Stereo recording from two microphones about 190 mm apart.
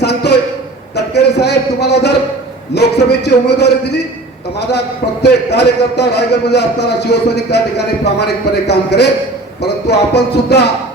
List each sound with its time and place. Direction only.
0.0 s a sound: 60° left (ahead or behind)
0.9 s a man's voice: 60° left (ahead or behind)
5.2 s a man's voice: 60° left (ahead or behind)